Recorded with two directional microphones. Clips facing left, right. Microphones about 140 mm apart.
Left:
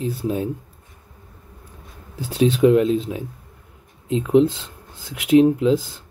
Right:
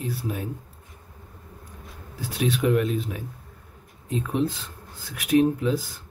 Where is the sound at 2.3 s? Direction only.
30° left (ahead or behind).